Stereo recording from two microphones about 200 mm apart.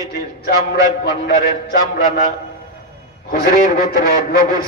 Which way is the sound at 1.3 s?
45° left (ahead or behind).